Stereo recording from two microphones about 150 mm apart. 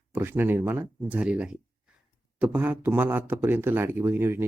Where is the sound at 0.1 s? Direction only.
15° right (ahead or behind).